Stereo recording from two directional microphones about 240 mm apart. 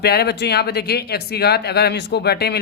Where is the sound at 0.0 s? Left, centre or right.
Left.